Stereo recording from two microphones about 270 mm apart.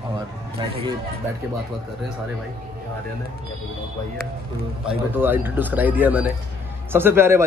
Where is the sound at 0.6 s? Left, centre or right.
Centre.